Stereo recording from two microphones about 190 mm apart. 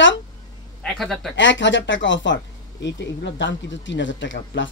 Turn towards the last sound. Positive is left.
turn(degrees=75)  # may be behind; listen again after turning